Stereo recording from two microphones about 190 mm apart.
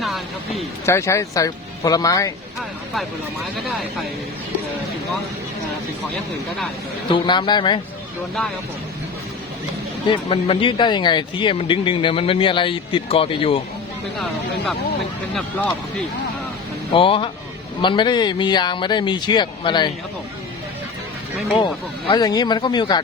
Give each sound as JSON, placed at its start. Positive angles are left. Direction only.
{"t": 0.0, "sound": "vehicle", "side_deg": 0}
{"t": 0.9, "sound": "speech", "side_deg": 15}
{"t": 2.6, "sound": "speech", "side_deg": 0}
{"t": 7.1, "sound": "speech", "side_deg": 25}
{"t": 10.2, "sound": "speech", "side_deg": 30}
{"t": 16.9, "sound": "speech", "side_deg": 25}
{"t": 21.6, "sound": "speech", "side_deg": 25}